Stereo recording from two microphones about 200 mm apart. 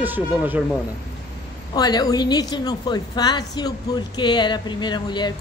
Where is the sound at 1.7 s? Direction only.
20° left (ahead or behind).